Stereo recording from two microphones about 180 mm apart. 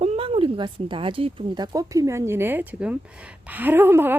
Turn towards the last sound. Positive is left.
turn(degrees=-10)  # may be behind; listen again after turning